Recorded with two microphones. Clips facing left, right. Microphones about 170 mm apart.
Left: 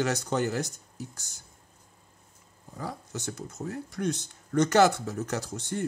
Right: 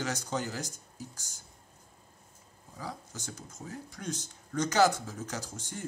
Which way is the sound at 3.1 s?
65° left (ahead or behind).